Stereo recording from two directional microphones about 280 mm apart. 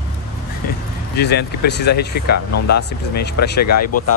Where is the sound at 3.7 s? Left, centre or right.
Left.